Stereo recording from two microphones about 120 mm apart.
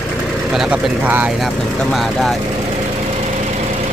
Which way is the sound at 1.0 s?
15° right (ahead or behind).